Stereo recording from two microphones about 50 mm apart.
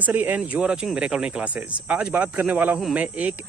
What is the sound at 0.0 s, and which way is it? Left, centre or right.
Speech, right.